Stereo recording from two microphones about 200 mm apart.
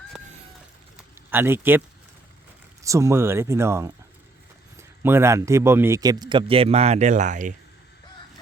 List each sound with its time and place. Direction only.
1.3 s speech: 10° right (ahead or behind)
2.8 s speech: 15° right (ahead or behind); by 7.5 s 40° right (ahead or behind)